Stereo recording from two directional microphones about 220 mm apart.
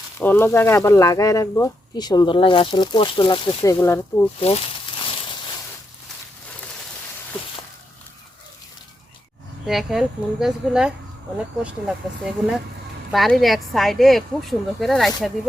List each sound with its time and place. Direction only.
0.2 s speech: 10° left (ahead or behind)
4.4 s a sound: 25° left (ahead or behind)
9.6 s a woman's voice: centre (ahead or behind)